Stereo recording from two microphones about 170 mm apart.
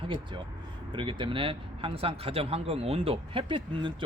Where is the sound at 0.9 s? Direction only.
30° right (ahead or behind).